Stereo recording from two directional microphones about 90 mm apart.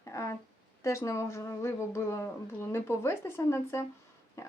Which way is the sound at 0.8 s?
30° left (ahead or behind).